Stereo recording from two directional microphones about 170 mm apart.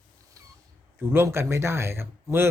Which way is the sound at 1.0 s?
15° right (ahead or behind).